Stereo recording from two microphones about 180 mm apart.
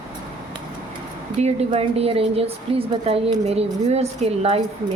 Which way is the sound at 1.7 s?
35° right (ahead or behind).